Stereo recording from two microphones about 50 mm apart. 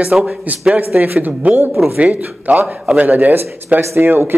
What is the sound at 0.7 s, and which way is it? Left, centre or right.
Speech, right.